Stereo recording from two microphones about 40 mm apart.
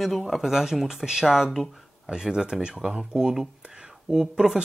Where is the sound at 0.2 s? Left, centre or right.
Centre.